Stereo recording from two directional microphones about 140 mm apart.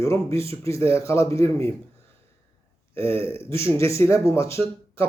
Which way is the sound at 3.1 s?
15° left (ahead or behind).